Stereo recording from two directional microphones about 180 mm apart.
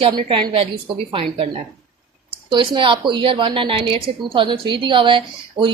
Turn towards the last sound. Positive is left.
turn(degrees=-25)  # may be behind; listen again after turning